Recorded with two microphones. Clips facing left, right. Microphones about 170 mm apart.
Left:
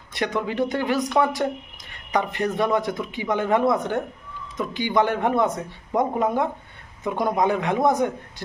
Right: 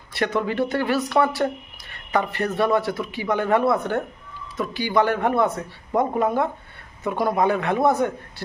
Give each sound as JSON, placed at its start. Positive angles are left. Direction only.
{"t": 0.1, "sound": "speech", "side_deg": 15}